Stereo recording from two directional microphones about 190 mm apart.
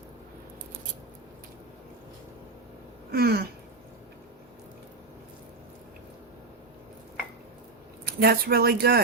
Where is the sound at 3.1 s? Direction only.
55° right (ahead or behind).